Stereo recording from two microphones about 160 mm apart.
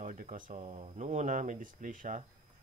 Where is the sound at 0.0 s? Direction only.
55° right (ahead or behind).